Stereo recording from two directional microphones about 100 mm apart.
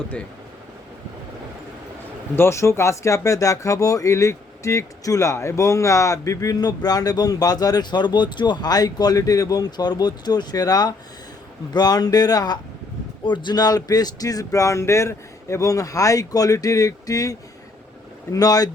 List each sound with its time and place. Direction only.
2.3 s speech: 25° left (ahead or behind)
13.2 s speech: 50° left (ahead or behind)